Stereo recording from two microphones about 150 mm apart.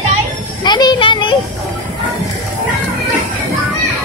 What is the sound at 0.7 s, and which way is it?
Music, 30° left (ahead or behind).